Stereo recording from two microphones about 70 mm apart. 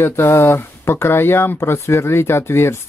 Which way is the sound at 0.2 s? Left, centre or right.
Left.